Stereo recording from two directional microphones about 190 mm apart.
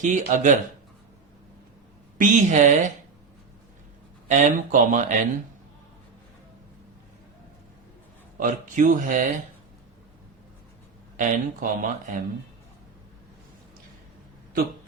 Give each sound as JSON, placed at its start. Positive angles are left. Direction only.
{"t": 0.0, "sound": "speech", "side_deg": -40}
{"t": 2.1, "sound": "speech", "side_deg": -40}
{"t": 4.3, "sound": "speech", "side_deg": -40}
{"t": 8.4, "sound": "speech", "side_deg": -45}
{"t": 11.2, "sound": "speech", "side_deg": -45}